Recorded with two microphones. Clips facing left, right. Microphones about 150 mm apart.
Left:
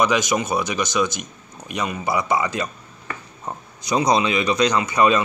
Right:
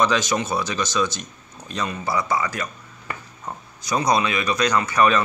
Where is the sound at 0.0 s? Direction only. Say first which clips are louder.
Left 1 dB; 15° left (ahead or behind).